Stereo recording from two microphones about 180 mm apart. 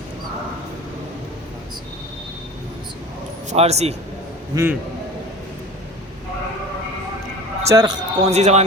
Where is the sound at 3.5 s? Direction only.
35° right (ahead or behind).